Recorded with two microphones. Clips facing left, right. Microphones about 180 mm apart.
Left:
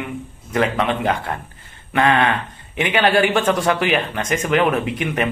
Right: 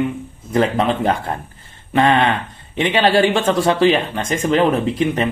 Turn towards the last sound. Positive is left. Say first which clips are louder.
# right 3 dB
turn(degrees=-30)  # may be behind; listen again after turning